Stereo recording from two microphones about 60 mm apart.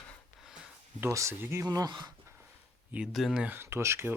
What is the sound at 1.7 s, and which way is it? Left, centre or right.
Speech, right.